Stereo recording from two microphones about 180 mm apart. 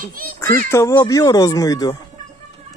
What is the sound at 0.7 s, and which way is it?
Speech, 15° left (ahead or behind).